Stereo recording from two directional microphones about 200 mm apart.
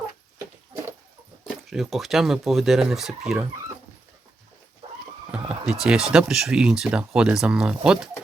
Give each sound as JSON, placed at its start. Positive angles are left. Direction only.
{"t": 1.5, "sound": "speech", "side_deg": 0}
{"t": 4.8, "sound": "horse", "side_deg": -30}
{"t": 5.3, "sound": "speech", "side_deg": -5}